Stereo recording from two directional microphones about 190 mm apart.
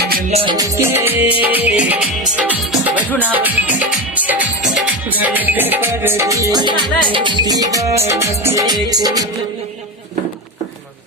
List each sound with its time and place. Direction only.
0.0 s music: 50° right (ahead or behind)
0.3 s music: 30° right (ahead or behind)
0.5 s music: 15° right (ahead or behind)